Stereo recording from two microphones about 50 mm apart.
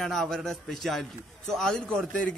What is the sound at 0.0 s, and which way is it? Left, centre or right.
A man's voice, centre.